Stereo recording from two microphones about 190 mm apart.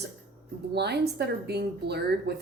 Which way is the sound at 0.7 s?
60° right (ahead or behind).